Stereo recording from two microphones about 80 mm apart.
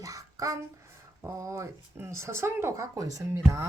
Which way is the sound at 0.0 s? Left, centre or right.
Right.